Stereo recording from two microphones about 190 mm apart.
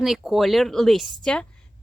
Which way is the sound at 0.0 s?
Centre (ahead or behind).